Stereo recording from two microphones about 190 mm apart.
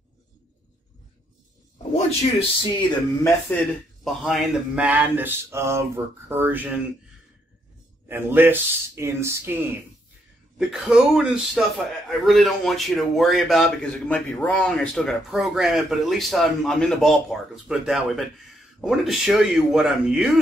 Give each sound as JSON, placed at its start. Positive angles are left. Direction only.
{"t": 2.6, "sound": "music", "side_deg": 25}
{"t": 4.0, "sound": "speech", "side_deg": 0}
{"t": 8.1, "sound": "speech", "side_deg": -10}
{"t": 10.7, "sound": "a man's voice", "side_deg": -5}